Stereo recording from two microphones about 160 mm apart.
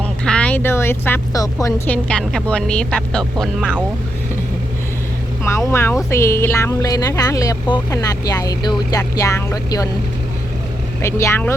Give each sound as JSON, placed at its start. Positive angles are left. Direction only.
{"t": 0.0, "sound": "a sound", "side_deg": 5}
{"t": 1.9, "sound": "speech", "side_deg": 5}
{"t": 5.4, "sound": "speech", "side_deg": 15}
{"t": 11.0, "sound": "speech", "side_deg": 15}